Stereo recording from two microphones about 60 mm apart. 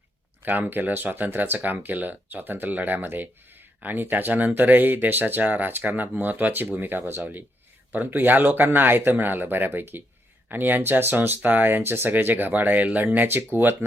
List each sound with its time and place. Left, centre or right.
0.4 s speech: right